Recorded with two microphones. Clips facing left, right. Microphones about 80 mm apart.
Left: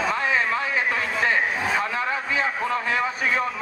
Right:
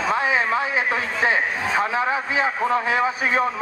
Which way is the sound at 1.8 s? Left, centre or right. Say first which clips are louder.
Right 4 dB; centre.